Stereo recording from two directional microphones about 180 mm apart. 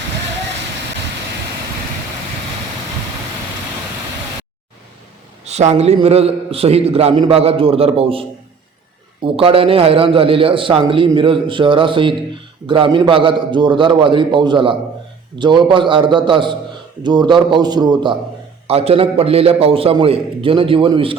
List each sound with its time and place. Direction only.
5.5 s a man's voice: 40° right (ahead or behind)